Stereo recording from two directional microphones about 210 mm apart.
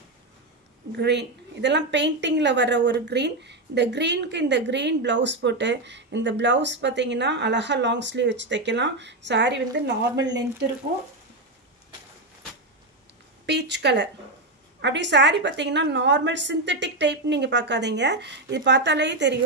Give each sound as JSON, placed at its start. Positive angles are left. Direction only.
{"t": 0.9, "sound": "a woman's voice", "side_deg": -55}
{"t": 13.5, "sound": "a woman's voice", "side_deg": -55}